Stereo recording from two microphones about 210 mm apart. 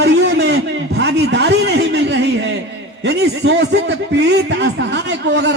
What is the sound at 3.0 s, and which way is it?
A man's voice, 55° right (ahead or behind).